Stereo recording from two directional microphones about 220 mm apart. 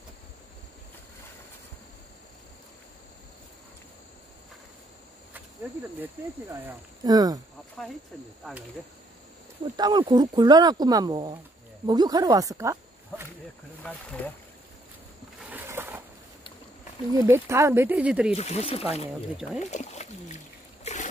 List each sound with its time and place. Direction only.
6.5 s speech: 15° right (ahead or behind)
7.8 s speech: centre (ahead or behind)
9.8 s speech: 20° right (ahead or behind)
14.2 s speech: 10° left (ahead or behind)
15.5 s a sound: 10° right (ahead or behind)
17.1 s speech: 15° right (ahead or behind)
18.3 s speech: 30° left (ahead or behind)
20.8 s a sound: 35° left (ahead or behind)